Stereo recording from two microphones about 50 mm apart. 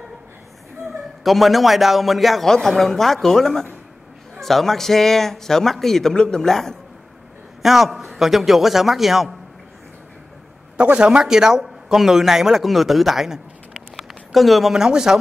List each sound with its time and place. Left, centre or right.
1.2 s a man's voice: centre
7.6 s a man's voice: centre
10.8 s speech: right
11.1 s speech: centre